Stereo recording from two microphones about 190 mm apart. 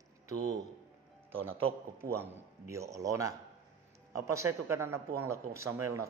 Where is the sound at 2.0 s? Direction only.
15° right (ahead or behind).